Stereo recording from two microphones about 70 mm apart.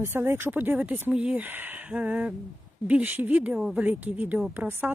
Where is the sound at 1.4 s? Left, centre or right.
Right.